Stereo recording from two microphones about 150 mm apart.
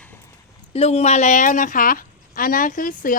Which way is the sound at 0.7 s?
45° left (ahead or behind).